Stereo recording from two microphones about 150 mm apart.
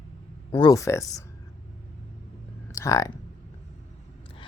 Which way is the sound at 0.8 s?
20° left (ahead or behind).